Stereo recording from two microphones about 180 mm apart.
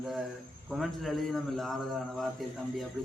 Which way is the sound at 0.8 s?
Centre (ahead or behind).